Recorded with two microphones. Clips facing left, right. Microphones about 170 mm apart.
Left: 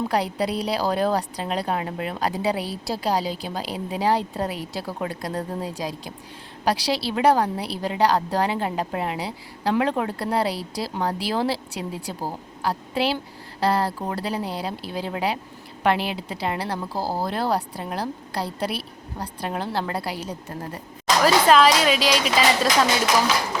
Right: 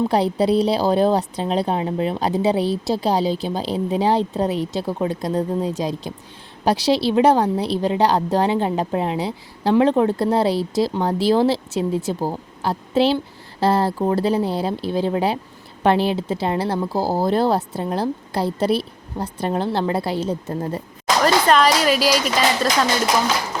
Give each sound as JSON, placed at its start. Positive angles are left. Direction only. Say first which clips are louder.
{"t": 0.1, "sound": "a woman's voice", "louder": "right 6 dB", "side_deg": -25}
{"t": 21.2, "sound": "a woman's voice", "louder": "even", "side_deg": 5}